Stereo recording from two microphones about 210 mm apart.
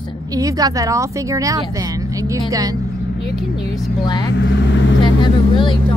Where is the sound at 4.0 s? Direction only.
20° left (ahead or behind).